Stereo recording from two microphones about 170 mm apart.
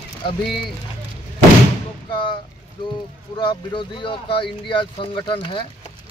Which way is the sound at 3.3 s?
30° left (ahead or behind).